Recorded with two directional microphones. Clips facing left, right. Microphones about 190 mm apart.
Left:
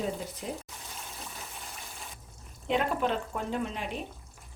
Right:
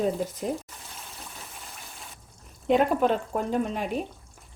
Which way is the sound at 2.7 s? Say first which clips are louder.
Right 7 dB; 45° right (ahead or behind).